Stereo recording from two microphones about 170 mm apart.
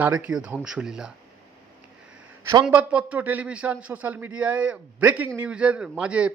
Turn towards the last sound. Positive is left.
turn(degrees=-5)  # may be behind; listen again after turning